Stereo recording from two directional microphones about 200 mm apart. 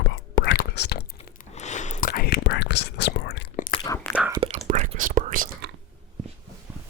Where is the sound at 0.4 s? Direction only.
55° left (ahead or behind).